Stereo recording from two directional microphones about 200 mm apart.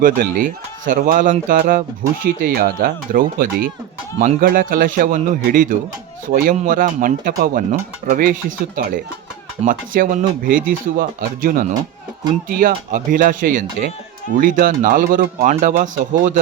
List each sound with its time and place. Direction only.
0.0 s speech: 45° right (ahead or behind)